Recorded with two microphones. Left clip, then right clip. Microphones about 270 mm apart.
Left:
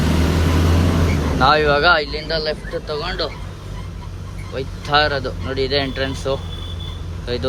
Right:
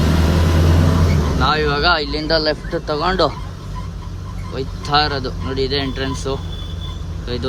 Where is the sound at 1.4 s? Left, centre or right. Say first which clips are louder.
Left 3 dB; centre; by 3.3 s right.